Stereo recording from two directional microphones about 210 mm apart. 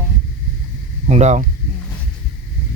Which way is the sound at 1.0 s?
35° right (ahead or behind).